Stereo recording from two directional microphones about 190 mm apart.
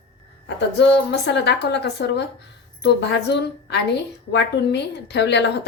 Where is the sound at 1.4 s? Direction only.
60° left (ahead or behind).